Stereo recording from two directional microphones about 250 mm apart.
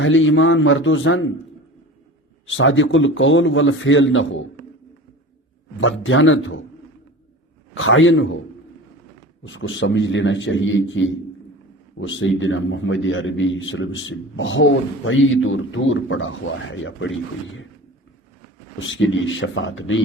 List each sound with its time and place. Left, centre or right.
0.0 s a man's voice: left
2.5 s a man's voice: left
5.8 s a man's voice: left
7.7 s a man's voice: left
9.4 s a man's voice: left
18.8 s a man's voice: left